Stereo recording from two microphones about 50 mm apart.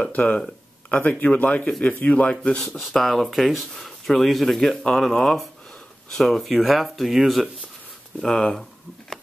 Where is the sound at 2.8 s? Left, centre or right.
Centre.